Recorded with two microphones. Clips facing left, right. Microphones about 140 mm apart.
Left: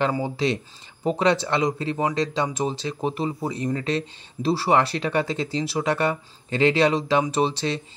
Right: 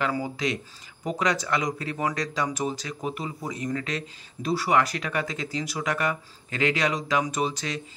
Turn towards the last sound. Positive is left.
turn(degrees=30)  # may be behind; listen again after turning